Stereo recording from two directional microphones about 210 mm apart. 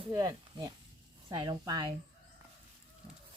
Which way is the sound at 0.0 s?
20° right (ahead or behind).